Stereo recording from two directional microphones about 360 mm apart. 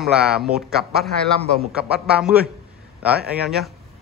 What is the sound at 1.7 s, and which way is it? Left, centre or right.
A man's voice, centre.